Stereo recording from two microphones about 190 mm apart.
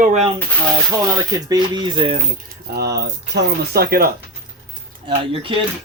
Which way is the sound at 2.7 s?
60° right (ahead or behind).